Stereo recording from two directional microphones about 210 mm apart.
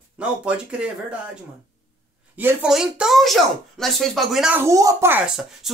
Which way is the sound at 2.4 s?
5° right (ahead or behind).